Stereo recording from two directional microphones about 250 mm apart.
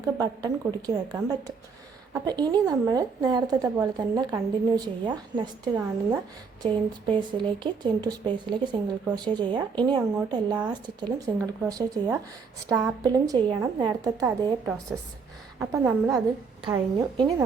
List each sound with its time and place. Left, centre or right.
0.0 s a woman's voice: centre
16.6 s a woman's voice: centre